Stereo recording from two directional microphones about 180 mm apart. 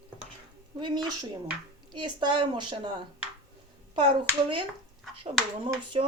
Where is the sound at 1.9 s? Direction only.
25° right (ahead or behind).